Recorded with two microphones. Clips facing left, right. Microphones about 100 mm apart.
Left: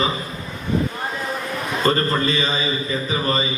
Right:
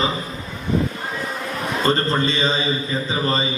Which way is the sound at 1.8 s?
25° right (ahead or behind).